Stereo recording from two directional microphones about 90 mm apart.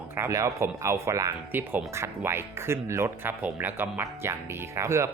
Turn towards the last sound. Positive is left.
turn(degrees=-30)  # may be behind; listen again after turning